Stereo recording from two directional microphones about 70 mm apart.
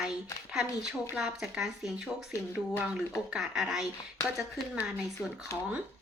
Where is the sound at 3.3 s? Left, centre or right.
Centre.